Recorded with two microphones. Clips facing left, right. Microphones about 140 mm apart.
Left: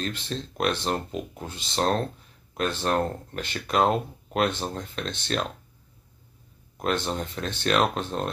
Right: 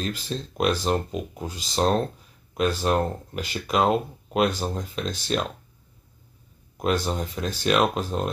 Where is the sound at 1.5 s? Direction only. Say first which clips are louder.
Right 2 dB; 25° left (ahead or behind).